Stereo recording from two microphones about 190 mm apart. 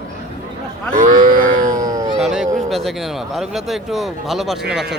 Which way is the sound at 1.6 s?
20° right (ahead or behind).